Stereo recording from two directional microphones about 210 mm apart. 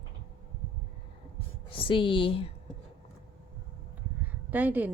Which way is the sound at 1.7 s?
25° left (ahead or behind).